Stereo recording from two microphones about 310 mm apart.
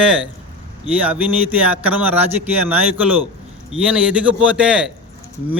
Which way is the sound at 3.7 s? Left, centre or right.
Centre.